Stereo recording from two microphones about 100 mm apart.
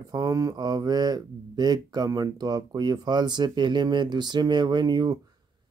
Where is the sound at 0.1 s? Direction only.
35° right (ahead or behind).